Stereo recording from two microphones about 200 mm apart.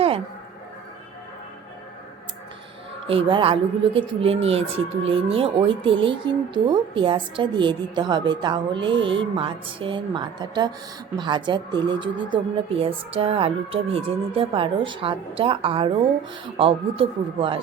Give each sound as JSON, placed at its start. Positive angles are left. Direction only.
{"t": 3.1, "sound": "speech", "side_deg": -25}